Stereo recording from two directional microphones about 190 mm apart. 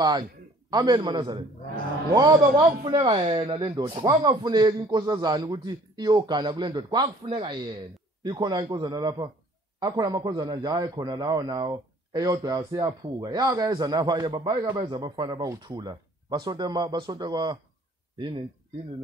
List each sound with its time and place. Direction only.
0.0 s a man's voice: 20° right (ahead or behind)
2.8 s a man's voice: 25° right (ahead or behind)